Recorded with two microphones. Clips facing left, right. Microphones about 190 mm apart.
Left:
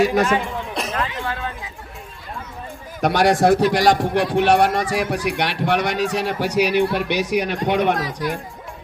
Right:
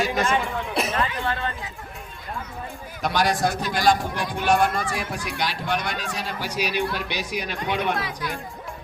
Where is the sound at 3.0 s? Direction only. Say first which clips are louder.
Left 6 dB; 65° left (ahead or behind).